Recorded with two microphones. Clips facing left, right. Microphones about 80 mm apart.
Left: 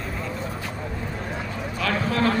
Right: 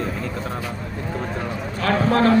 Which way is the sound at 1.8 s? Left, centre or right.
Right.